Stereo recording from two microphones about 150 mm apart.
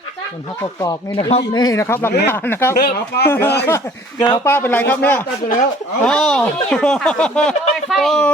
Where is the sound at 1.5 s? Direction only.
25° left (ahead or behind).